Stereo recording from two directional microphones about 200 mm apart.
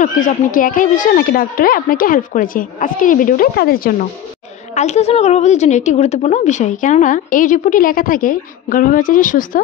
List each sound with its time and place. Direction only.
0.0 s speech: 40° left (ahead or behind)
4.7 s a woman's voice: 35° left (ahead or behind)